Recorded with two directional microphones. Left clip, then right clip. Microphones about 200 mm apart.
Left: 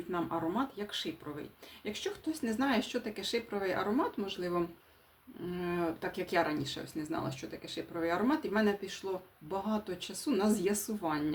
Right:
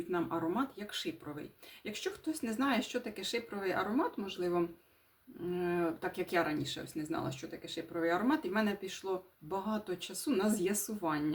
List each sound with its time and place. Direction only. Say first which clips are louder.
0.1 s speech: left 1 dB; 5° left (ahead or behind)